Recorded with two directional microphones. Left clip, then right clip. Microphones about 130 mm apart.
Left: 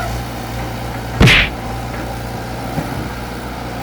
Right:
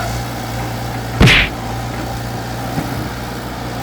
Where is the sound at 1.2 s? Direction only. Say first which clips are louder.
Even; centre (ahead or behind).